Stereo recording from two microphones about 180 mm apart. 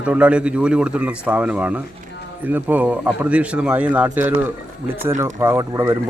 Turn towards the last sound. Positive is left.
turn(degrees=-15)  # may be behind; listen again after turning